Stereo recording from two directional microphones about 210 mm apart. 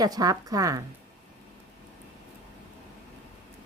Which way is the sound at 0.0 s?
15° right (ahead or behind).